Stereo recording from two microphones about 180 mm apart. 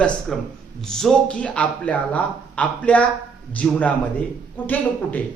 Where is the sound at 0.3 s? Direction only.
Centre (ahead or behind).